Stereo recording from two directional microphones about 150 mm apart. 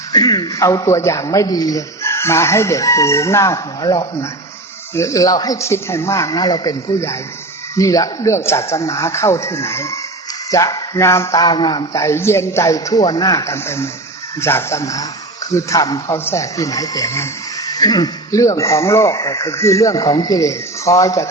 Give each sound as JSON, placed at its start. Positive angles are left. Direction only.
{"t": 0.1, "sound": "a man's voice", "side_deg": 30}
{"t": 12.0, "sound": "a man's voice", "side_deg": 15}